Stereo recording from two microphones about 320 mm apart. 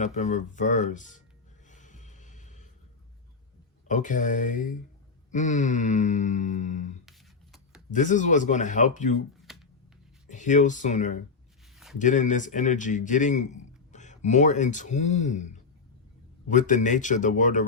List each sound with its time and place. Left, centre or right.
0.0 s a man's voice: left
1.6 s music: left
3.8 s a man's voice: left
7.0 s rub: centre
7.9 s a man's voice: left
9.5 s a sound: centre
10.2 s a man's voice: left